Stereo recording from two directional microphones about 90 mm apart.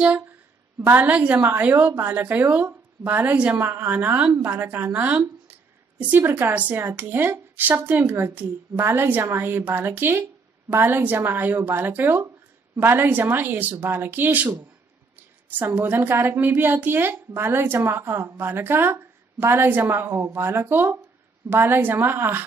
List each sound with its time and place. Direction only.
0.7 s a woman's voice: 20° right (ahead or behind)